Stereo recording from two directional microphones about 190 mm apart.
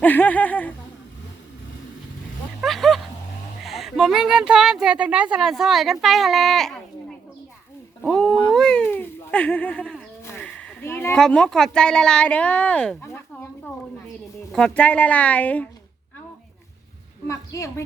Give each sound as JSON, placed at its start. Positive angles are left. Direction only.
{"t": 0.0, "sound": "a woman's voice", "side_deg": 10}
{"t": 2.6, "sound": "a sound", "side_deg": 0}
{"t": 3.6, "sound": "a woman's voice", "side_deg": 0}
{"t": 17.2, "sound": "a woman's voice", "side_deg": 15}